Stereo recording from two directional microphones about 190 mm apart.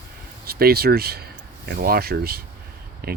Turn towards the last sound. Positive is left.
turn(degrees=-55)  # may be behind; listen again after turning